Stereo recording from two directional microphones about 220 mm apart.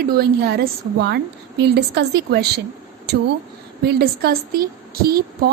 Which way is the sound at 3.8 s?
45° right (ahead or behind).